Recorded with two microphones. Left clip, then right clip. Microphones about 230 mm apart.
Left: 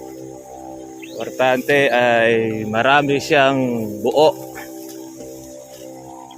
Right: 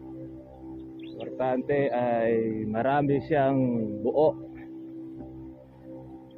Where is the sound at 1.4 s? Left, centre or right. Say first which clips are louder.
Left 11 dB; left.